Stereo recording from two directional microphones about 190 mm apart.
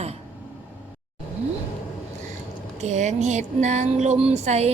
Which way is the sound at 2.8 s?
40° right (ahead or behind).